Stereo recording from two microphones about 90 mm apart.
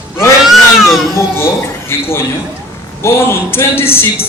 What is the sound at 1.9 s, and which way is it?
A man's voice, 30° left (ahead or behind).